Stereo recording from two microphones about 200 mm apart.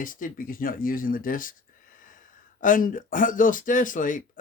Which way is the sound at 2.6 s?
40° left (ahead or behind).